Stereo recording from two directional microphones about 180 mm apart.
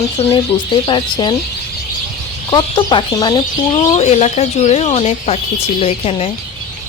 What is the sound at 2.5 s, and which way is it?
Speech, 25° left (ahead or behind).